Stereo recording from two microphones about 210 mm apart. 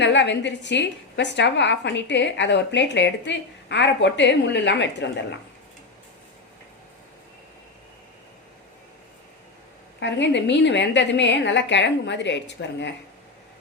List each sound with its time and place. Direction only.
0.0 s a woman's voice: 55° left (ahead or behind)
10.0 s a woman's voice: 55° left (ahead or behind)